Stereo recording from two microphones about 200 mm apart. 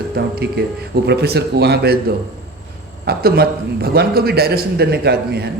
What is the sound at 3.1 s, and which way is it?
A man's voice, 50° right (ahead or behind).